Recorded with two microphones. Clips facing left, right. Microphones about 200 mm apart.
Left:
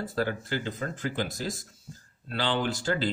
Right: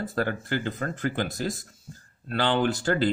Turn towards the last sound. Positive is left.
turn(degrees=-55)  # may be behind; listen again after turning